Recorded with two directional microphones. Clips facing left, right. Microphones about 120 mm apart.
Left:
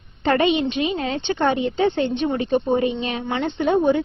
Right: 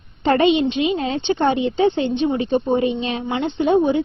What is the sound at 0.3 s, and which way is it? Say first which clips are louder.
A woman's voice: right 3 dB; 25° right (ahead or behind).